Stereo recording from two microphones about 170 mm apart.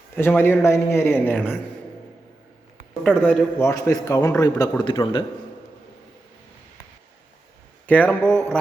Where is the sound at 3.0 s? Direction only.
5° left (ahead or behind); by 5.2 s 30° left (ahead or behind).